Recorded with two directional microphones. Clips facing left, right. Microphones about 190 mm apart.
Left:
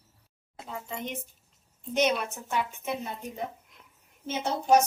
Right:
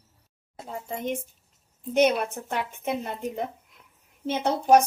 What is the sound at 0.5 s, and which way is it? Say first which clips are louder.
A woman's voice: right 3 dB; 45° right (ahead or behind).